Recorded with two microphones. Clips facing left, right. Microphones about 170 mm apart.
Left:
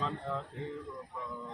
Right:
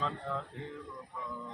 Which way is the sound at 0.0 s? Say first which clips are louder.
Even; 5° left (ahead or behind).